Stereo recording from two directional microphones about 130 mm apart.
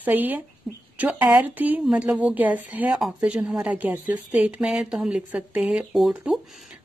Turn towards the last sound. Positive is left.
turn(degrees=-5)  # may be behind; listen again after turning